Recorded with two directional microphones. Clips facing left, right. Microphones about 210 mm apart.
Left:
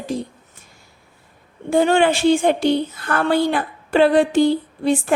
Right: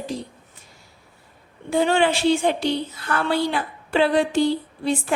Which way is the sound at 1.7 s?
50° left (ahead or behind).